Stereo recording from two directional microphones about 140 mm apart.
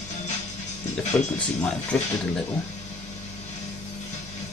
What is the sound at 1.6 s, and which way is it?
Speech, 5° left (ahead or behind).